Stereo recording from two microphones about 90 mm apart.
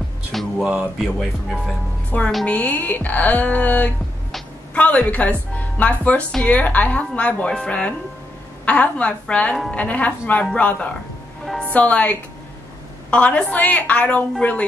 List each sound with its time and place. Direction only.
0.3 s music: centre (ahead or behind)
0.7 s speech: 5° right (ahead or behind)
2.4 s a woman's voice: 15° left (ahead or behind)